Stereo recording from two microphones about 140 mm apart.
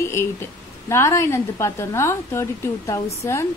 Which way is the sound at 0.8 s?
20° left (ahead or behind).